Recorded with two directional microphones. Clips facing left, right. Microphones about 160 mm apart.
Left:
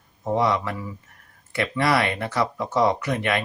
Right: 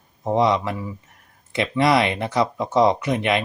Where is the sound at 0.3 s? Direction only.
20° right (ahead or behind).